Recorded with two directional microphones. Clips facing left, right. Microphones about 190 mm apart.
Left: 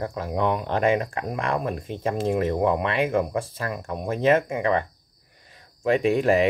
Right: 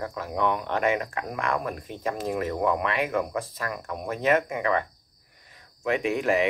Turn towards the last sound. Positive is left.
turn(degrees=35)  # may be behind; listen again after turning